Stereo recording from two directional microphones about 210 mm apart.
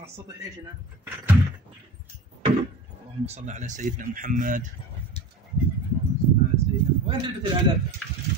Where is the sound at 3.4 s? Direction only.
35° right (ahead or behind).